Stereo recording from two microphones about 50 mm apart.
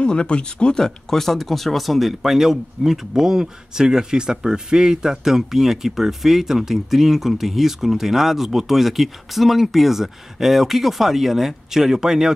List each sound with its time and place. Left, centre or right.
0.0 s speech: left; by 12.4 s centre